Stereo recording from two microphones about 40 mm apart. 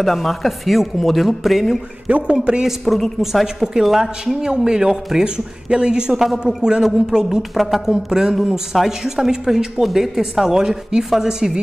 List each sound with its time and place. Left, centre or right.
0.0 s speech: centre
2.0 s speech: right
2.8 s a woman's voice: centre